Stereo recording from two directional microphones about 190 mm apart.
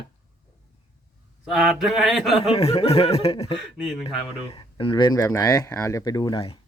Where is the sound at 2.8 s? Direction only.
35° left (ahead or behind).